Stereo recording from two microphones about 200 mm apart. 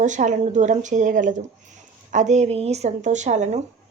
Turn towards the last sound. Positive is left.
turn(degrees=-35)  # may be behind; listen again after turning